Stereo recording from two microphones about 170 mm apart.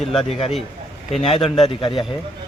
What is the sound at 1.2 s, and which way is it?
Speech, 35° left (ahead or behind).